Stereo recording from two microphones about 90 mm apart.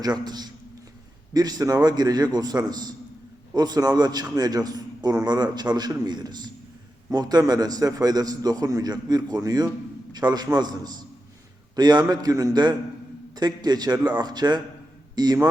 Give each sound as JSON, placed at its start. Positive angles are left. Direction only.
{"t": 0.0, "sound": "a man's voice", "side_deg": -50}